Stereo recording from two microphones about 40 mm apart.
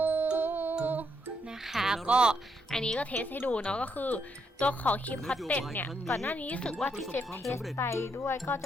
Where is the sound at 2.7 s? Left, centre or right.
Centre.